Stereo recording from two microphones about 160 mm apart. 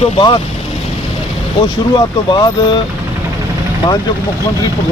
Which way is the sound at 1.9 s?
30° left (ahead or behind).